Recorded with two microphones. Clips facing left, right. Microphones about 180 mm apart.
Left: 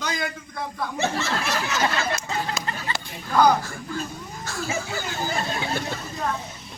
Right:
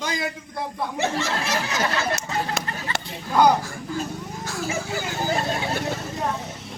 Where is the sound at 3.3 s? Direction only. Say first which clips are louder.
Right 1 dB; 10° right (ahead or behind).